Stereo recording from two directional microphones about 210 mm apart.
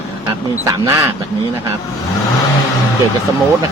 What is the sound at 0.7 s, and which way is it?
Speech, 15° right (ahead or behind).